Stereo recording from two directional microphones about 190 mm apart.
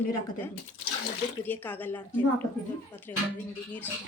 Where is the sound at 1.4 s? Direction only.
10° left (ahead or behind).